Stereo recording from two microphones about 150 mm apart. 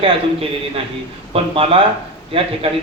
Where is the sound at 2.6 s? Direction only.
40° right (ahead or behind).